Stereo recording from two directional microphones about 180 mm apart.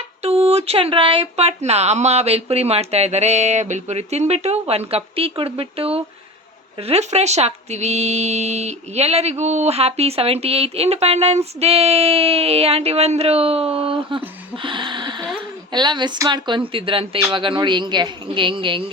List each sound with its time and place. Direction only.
0.2 s speech: 35° right (ahead or behind)